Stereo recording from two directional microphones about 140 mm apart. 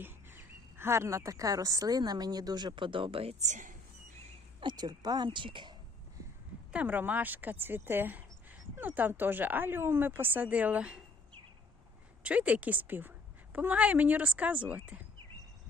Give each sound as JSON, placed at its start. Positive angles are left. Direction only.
{"t": 0.0, "sound": "a woman's voice", "side_deg": -15}
{"t": 4.6, "sound": "speech", "side_deg": -30}
{"t": 6.7, "sound": "speech", "side_deg": -10}
{"t": 12.2, "sound": "speech", "side_deg": -10}